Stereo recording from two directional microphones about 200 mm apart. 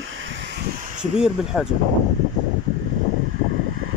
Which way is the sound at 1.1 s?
Centre (ahead or behind).